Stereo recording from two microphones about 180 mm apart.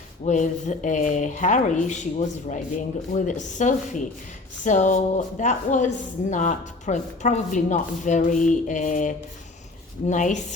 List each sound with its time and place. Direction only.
0.3 s speech: 45° left (ahead or behind)